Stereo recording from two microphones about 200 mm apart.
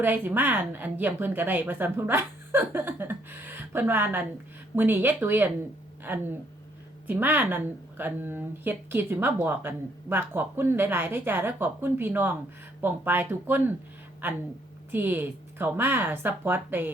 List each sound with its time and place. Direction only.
0.0 s speech: 10° right (ahead or behind)
7.1 s speech: 10° right (ahead or behind)
14.9 s speech: 10° right (ahead or behind)